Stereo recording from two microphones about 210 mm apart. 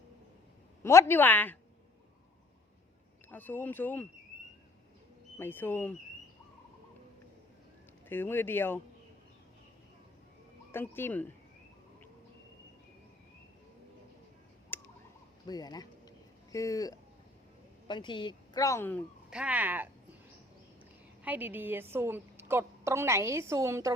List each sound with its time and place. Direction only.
0.8 s a woman's voice: 10° left (ahead or behind)
3.2 s a woman's voice: 10° left (ahead or behind)
5.4 s a woman's voice: 10° left (ahead or behind)
8.1 s a woman's voice: 10° left (ahead or behind)
10.7 s a woman's voice: 10° left (ahead or behind)
14.7 s tick: 10° left (ahead or behind)
15.4 s a sound: 20° left (ahead or behind)
17.8 s speech: 20° left (ahead or behind)
19.3 s a woman's voice: 5° right (ahead or behind)
21.2 s a woman's voice: 10° right (ahead or behind)